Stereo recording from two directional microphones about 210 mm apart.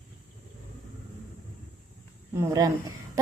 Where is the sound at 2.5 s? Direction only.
15° right (ahead or behind).